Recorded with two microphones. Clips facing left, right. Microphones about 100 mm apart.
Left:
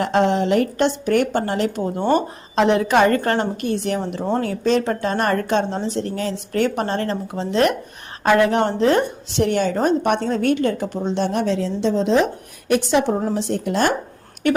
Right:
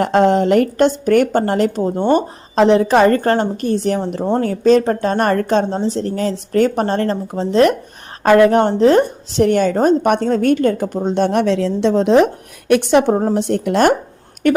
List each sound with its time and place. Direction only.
0.0 s a woman's voice: 45° right (ahead or behind)
1.8 s speech: 25° right (ahead or behind)
2.6 s a woman's voice: 35° right (ahead or behind); by 13.9 s 60° right (ahead or behind)